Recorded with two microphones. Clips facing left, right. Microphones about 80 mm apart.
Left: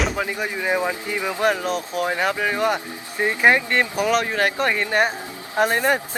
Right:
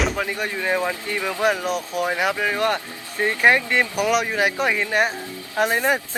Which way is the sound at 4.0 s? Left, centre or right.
Centre.